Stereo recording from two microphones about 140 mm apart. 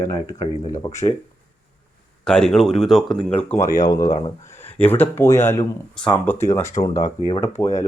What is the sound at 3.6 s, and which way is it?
Speech, 30° left (ahead or behind).